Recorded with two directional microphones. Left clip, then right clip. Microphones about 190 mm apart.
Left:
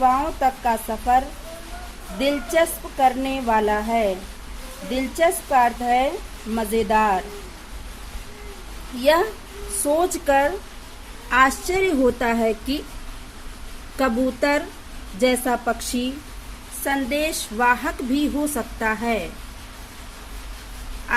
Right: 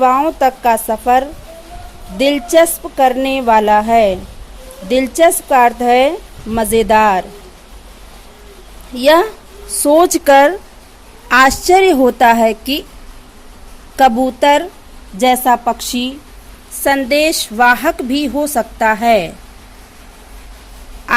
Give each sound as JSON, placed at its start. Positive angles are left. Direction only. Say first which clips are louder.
{"t": 0.0, "sound": "a woman's voice", "louder": "right 8 dB", "side_deg": -50}
{"t": 9.0, "sound": "a woman's voice", "louder": "right 8 dB", "side_deg": -50}
{"t": 15.2, "sound": "a woman's voice", "louder": "right 9 dB", "side_deg": -40}
{"t": 16.8, "sound": "a woman's voice", "louder": "right 11 dB", "side_deg": -50}